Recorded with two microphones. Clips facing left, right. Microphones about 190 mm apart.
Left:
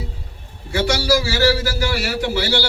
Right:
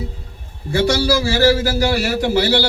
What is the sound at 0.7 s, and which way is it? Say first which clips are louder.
A man's voice: right 2 dB; 40° right (ahead or behind).